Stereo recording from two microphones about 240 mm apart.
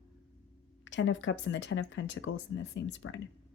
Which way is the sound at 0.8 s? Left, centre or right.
Left.